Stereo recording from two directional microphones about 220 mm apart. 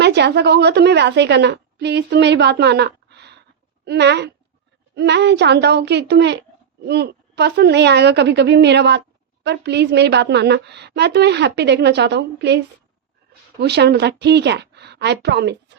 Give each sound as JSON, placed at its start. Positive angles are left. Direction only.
{"t": 0.0, "sound": "a woman's voice", "side_deg": -50}